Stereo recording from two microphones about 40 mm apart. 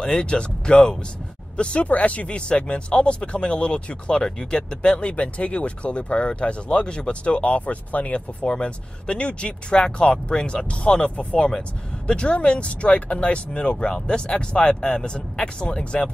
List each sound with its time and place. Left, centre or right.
0.0 s speech: left